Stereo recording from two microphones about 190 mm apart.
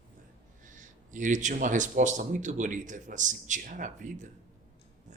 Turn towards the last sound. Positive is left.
turn(degrees=-40)  # may be behind; listen again after turning